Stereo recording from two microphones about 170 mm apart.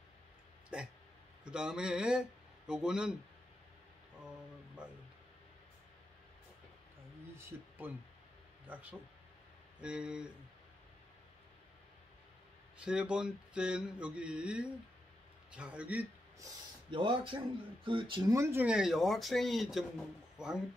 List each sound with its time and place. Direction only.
0.7 s hiccup: 5° right (ahead or behind)
1.4 s speech: 5° right (ahead or behind)
7.4 s speech: 10° right (ahead or behind)
12.7 s speech: 5° right (ahead or behind)
16.9 s speech: 30° right (ahead or behind); by 20.6 s 5° right (ahead or behind)